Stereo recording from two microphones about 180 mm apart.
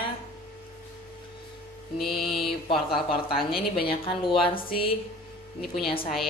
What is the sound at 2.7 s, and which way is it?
A woman's voice, 30° left (ahead or behind).